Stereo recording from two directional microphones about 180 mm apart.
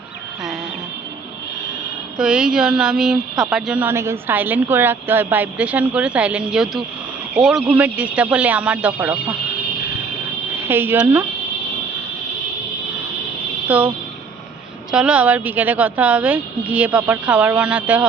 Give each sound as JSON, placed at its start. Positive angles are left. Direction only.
{"t": 2.1, "sound": "a woman's voice", "side_deg": -5}
{"t": 10.7, "sound": "a woman's voice", "side_deg": -10}
{"t": 13.7, "sound": "speech", "side_deg": -10}
{"t": 14.9, "sound": "a woman's voice", "side_deg": -5}